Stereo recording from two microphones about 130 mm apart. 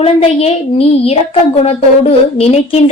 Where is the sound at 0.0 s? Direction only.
50° left (ahead or behind).